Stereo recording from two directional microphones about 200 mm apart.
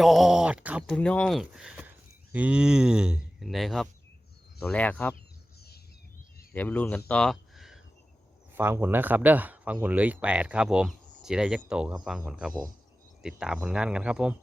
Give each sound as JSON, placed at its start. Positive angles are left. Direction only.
{"t": 0.0, "sound": "speech", "side_deg": 0}
{"t": 0.9, "sound": "speech", "side_deg": 5}
{"t": 6.5, "sound": "speech", "side_deg": 10}
{"t": 7.1, "sound": "a sound", "side_deg": 5}
{"t": 8.5, "sound": "speech", "side_deg": -10}